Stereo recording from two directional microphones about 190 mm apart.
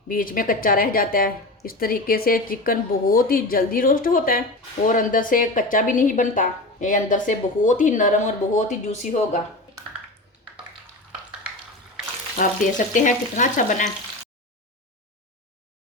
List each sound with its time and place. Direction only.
0.1 s speech: 45° left (ahead or behind)
12.9 s frying: 40° left (ahead or behind)